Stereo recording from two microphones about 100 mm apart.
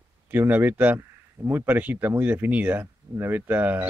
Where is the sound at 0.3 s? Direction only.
20° right (ahead or behind).